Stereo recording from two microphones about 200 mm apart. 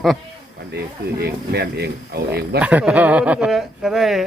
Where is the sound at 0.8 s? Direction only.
55° right (ahead or behind).